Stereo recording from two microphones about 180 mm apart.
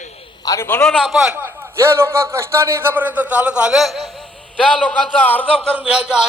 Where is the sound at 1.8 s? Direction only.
15° right (ahead or behind).